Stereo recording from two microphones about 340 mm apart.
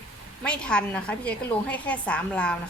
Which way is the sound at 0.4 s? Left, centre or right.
Centre.